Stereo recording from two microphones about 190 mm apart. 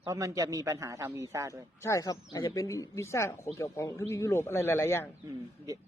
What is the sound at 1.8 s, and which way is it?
Speech, 15° left (ahead or behind).